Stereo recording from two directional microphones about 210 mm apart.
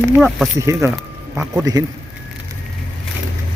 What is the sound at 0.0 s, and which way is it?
Speech, centre (ahead or behind).